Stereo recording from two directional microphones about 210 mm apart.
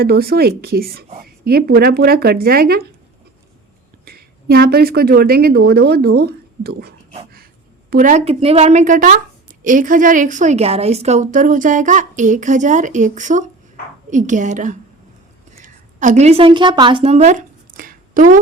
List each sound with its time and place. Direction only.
0.0 s speech: 45° right (ahead or behind)
4.0 s a woman's voice: 45° right (ahead or behind)